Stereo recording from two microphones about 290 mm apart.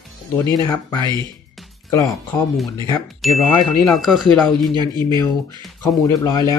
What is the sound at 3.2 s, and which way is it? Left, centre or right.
Speech, centre.